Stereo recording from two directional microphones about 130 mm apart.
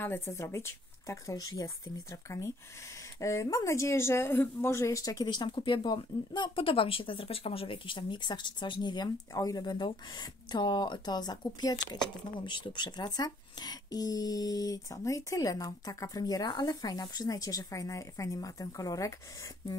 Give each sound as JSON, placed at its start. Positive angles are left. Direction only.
{"t": 0.0, "sound": "a woman's voice", "side_deg": 20}